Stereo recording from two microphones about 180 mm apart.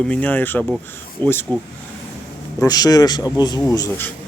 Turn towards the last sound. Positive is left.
turn(degrees=15)  # may be behind; listen again after turning